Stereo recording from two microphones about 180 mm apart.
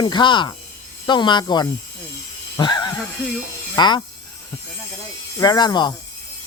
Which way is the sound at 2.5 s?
25° left (ahead or behind).